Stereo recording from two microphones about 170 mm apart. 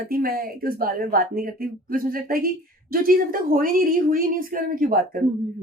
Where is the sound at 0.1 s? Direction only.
60° right (ahead or behind).